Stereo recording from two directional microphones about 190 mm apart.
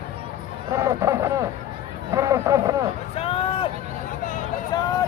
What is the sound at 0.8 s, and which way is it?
Speech, 15° right (ahead or behind).